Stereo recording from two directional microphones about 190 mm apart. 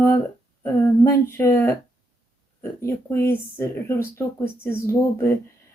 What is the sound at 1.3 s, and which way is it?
Speech, 15° left (ahead or behind).